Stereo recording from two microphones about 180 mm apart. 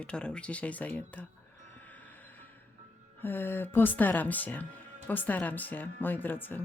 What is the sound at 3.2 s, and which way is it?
Speech, 10° left (ahead or behind).